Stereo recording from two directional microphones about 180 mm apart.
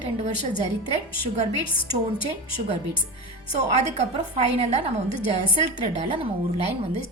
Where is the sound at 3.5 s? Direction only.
40° right (ahead or behind).